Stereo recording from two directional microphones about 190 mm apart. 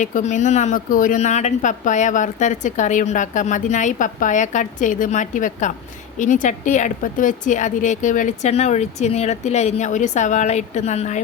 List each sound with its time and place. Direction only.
0.0 s speech: 40° left (ahead or behind)